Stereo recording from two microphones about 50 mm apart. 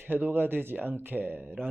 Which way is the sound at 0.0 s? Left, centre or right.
Right.